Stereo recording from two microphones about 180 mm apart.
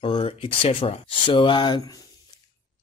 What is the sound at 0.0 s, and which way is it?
Speech, 30° left (ahead or behind).